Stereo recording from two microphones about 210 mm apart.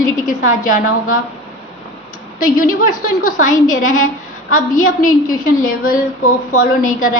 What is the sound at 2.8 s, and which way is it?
A woman's voice, 40° left (ahead or behind).